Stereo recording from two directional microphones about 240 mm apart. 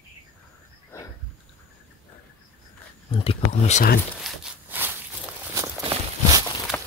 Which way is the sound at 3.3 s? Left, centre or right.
Left.